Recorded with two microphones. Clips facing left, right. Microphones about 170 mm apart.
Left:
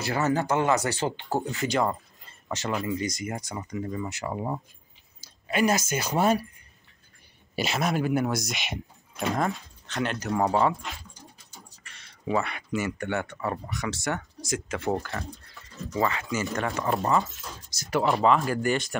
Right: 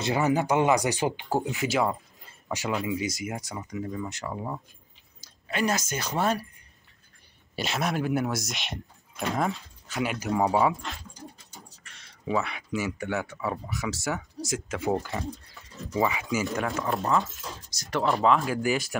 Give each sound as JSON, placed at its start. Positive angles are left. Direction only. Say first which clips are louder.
{"t": 0.0, "sound": "speech", "louder": "right 1 dB", "side_deg": -15}
{"t": 1.6, "sound": "speech", "louder": "even", "side_deg": -5}
{"t": 4.3, "sound": "speech", "louder": "left 5 dB", "side_deg": 20}
{"t": 5.2, "sound": "speech", "louder": "left 4 dB", "side_deg": 10}
{"t": 7.5, "sound": "speech", "louder": "left 2 dB", "side_deg": 0}
{"t": 11.8, "sound": "speech", "louder": "left 2 dB", "side_deg": 0}